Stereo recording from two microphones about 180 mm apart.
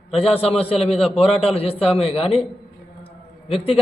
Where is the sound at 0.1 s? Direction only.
35° left (ahead or behind).